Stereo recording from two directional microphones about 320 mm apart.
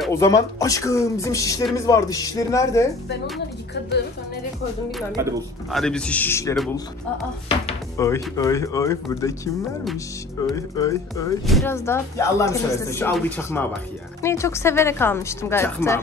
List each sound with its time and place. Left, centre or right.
0.0 s speech: centre
5.7 s a man's voice: centre